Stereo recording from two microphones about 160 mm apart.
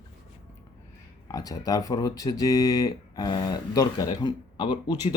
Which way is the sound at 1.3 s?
20° left (ahead or behind).